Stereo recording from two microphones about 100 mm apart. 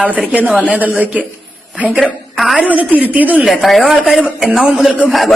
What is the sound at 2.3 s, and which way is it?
Speech, centre (ahead or behind).